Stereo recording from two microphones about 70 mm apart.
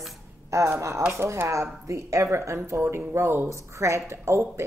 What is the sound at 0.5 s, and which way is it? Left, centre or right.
Speech, right.